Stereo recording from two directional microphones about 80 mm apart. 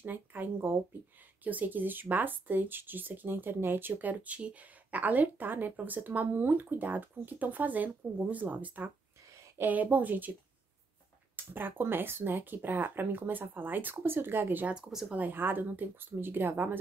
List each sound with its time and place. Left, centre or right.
0.0 s speech: right
11.3 s speech: right
14.8 s speech: centre
15.0 s speech: right